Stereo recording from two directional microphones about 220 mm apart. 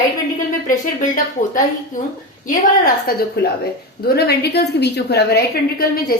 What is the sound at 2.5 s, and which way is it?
Speech, 35° left (ahead or behind).